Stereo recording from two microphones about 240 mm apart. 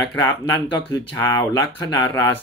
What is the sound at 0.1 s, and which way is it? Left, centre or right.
Speech, centre.